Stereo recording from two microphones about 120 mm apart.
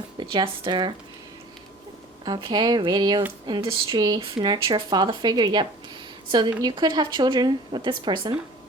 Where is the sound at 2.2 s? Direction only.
35° right (ahead or behind).